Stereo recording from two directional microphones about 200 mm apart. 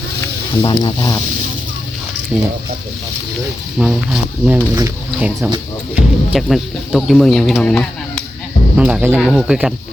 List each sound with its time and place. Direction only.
0.6 s speech: 25° left (ahead or behind)
2.3 s speech: 5° right (ahead or behind)
3.8 s speech: 5° right (ahead or behind)